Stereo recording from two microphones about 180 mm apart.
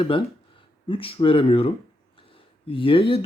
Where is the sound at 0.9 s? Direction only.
30° left (ahead or behind).